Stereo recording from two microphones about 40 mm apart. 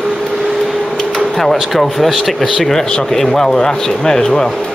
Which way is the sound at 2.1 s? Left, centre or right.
Centre.